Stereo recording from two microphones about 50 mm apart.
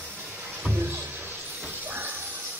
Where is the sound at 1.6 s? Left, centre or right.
Right.